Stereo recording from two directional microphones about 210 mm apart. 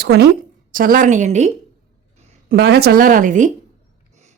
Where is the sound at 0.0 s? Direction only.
50° right (ahead or behind).